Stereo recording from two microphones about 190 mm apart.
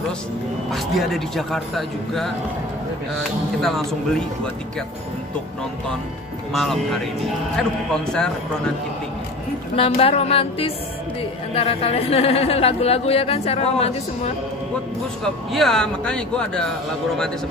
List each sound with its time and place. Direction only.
0.7 s speech: centre (ahead or behind)
3.6 s speech: centre (ahead or behind)
6.5 s speech: centre (ahead or behind)
9.8 s speech: 30° left (ahead or behind)
15.2 s speech: centre (ahead or behind)